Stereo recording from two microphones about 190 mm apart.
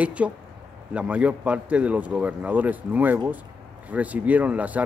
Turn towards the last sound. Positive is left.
turn(degrees=-10)  # may be behind; listen again after turning